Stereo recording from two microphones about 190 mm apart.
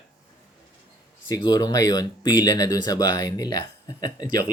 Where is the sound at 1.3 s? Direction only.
20° left (ahead or behind).